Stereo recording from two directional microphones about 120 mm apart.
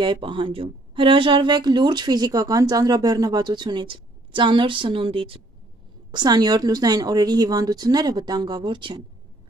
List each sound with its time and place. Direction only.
0.0 s a woman's voice: 45° right (ahead or behind)
6.1 s a woman's voice: 35° right (ahead or behind)